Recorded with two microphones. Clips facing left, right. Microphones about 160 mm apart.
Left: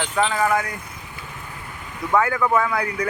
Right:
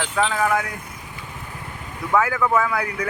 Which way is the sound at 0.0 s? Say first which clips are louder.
Left 1 dB; centre (ahead or behind).